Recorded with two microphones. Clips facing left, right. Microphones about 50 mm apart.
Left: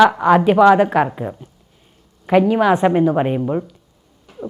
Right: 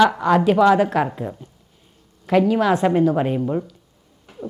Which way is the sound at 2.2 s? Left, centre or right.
Left.